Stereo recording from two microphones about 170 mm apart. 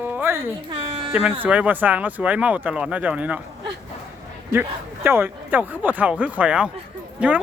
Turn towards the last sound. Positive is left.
turn(degrees=-5)  # may be behind; listen again after turning